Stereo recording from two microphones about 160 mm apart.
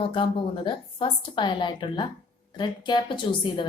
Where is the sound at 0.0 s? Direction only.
35° left (ahead or behind).